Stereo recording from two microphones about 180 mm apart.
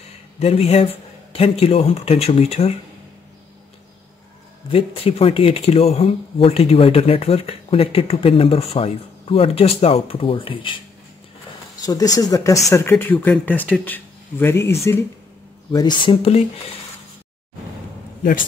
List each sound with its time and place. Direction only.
0.4 s speech: 35° left (ahead or behind)
4.6 s speech: 30° left (ahead or behind)
11.8 s speech: 20° left (ahead or behind)